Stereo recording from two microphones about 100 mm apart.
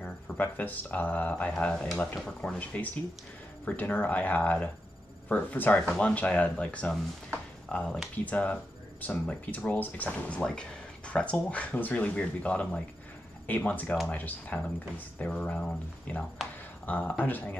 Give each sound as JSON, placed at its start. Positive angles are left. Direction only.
{"t": 0.0, "sound": "speech", "side_deg": 15}